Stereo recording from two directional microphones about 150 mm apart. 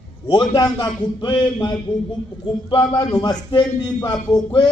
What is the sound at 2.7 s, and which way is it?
A man's voice, 30° left (ahead or behind).